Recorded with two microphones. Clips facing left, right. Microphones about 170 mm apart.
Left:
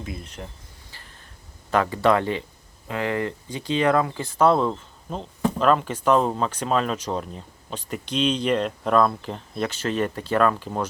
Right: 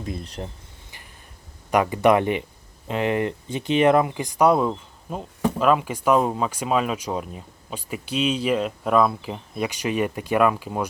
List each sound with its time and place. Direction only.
0.4 s speech: 30° right (ahead or behind)
1.7 s speech: 15° right (ahead or behind)